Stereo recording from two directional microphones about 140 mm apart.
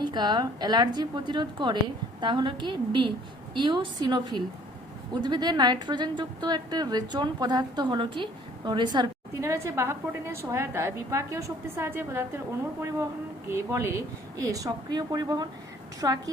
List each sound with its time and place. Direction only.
0.0 s a woman's voice: 30° right (ahead or behind)
13.5 s a woman's voice: 20° right (ahead or behind)